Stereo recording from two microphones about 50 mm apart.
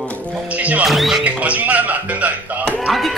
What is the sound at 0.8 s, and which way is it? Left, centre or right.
Speech, centre.